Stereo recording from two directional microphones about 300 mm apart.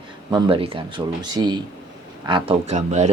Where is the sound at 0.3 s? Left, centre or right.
Centre.